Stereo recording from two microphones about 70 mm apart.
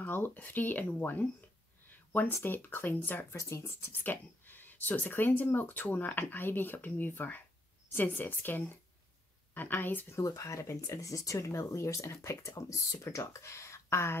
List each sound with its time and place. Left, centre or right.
0.0 s speech: left
1.9 s a sound: left
2.3 s speech: left
3.3 s speech: left
3.9 s speech: left
10.1 s speech: left